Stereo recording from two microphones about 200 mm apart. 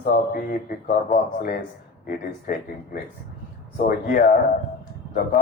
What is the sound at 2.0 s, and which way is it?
A man's voice, 45° left (ahead or behind).